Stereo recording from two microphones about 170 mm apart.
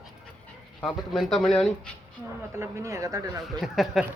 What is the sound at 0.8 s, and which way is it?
Speech, centre (ahead or behind).